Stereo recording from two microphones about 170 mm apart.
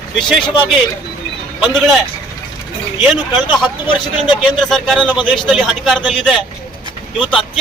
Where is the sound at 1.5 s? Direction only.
Centre (ahead or behind).